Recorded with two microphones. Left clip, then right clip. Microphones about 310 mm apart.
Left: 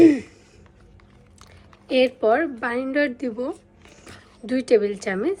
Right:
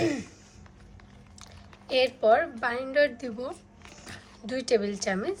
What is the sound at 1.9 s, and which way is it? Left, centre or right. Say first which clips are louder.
A woman's voice: left 3 dB; left.